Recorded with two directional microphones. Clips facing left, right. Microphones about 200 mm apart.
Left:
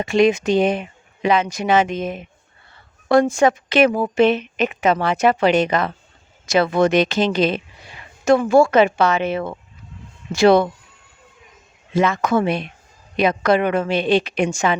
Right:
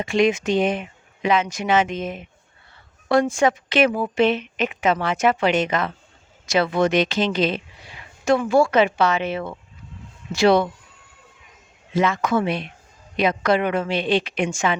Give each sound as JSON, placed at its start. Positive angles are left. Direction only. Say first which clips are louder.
{"t": 0.0, "sound": "a woman's voice", "louder": "left 3 dB", "side_deg": 40}
{"t": 11.9, "sound": "a woman's voice", "louder": "left 2 dB", "side_deg": 45}